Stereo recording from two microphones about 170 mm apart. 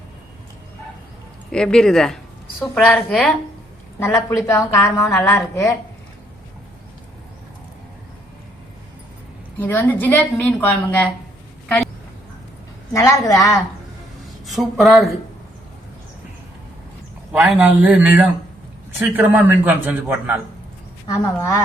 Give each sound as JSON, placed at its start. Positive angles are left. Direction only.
{"t": 1.5, "sound": "a woman's voice", "side_deg": 5}
{"t": 9.6, "sound": "a woman's voice", "side_deg": 10}
{"t": 12.9, "sound": "speech", "side_deg": 20}
{"t": 14.4, "sound": "speech", "side_deg": 0}
{"t": 17.3, "sound": "a man's voice", "side_deg": -5}
{"t": 21.1, "sound": "a woman's voice", "side_deg": 15}